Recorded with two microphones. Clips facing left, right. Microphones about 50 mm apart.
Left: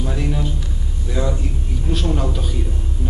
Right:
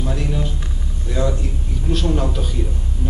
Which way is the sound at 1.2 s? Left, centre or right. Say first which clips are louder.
Right 1 dB; centre.